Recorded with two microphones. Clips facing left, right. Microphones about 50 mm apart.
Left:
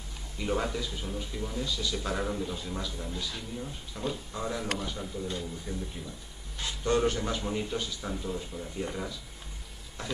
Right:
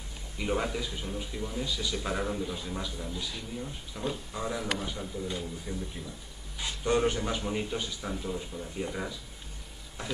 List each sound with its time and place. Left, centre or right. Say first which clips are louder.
0.4 s a man's voice: even; centre